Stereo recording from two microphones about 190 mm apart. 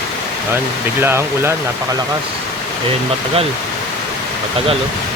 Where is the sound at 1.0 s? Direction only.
10° right (ahead or behind).